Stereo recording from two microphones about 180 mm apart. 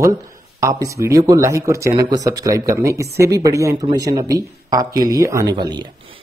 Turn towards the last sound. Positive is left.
turn(degrees=-25)  # may be behind; listen again after turning